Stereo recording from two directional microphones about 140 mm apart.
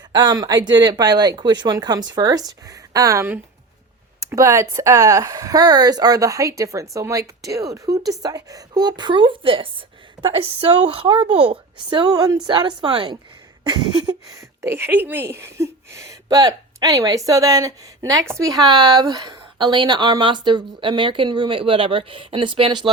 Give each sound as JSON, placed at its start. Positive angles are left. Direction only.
{"t": 0.1, "sound": "a woman's voice", "side_deg": -30}